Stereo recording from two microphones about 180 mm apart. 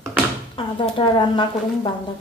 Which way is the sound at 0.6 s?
30° left (ahead or behind).